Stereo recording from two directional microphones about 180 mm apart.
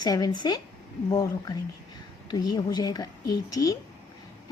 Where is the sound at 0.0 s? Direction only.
20° left (ahead or behind).